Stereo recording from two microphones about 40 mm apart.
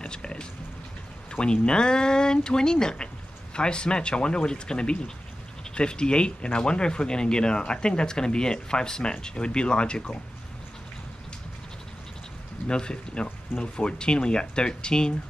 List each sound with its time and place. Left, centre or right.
0.0 s a sound: left
1.3 s speech: left
12.6 s speech: left